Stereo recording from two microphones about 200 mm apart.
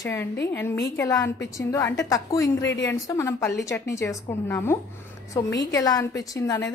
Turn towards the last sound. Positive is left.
turn(degrees=15)  # may be behind; listen again after turning